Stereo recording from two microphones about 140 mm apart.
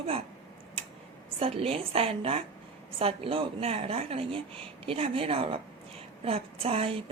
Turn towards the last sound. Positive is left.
turn(degrees=-45)  # may be behind; listen again after turning